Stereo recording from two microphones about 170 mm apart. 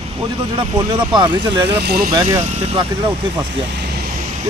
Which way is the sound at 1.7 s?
70° right (ahead or behind).